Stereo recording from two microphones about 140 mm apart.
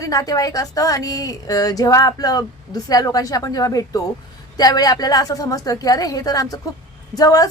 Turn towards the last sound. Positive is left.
turn(degrees=25)  # may be behind; listen again after turning